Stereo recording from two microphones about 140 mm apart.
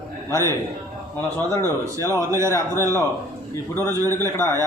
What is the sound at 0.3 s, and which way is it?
A man's voice, 20° left (ahead or behind).